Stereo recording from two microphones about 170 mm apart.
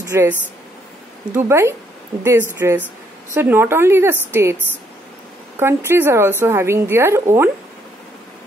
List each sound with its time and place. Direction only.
0.0 s a woman's voice: 15° right (ahead or behind)
5.6 s a woman's voice: 15° right (ahead or behind)